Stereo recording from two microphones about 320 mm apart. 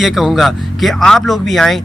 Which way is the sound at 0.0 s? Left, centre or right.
Centre.